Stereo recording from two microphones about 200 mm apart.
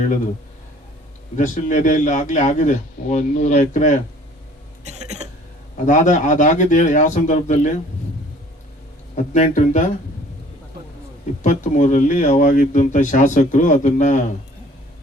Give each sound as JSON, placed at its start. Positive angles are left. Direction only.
{"t": 1.4, "sound": "speech", "side_deg": 40}
{"t": 4.9, "sound": "a sound", "side_deg": -35}
{"t": 5.7, "sound": "speech", "side_deg": 35}
{"t": 9.3, "sound": "speech", "side_deg": 35}
{"t": 11.4, "sound": "speech", "side_deg": 40}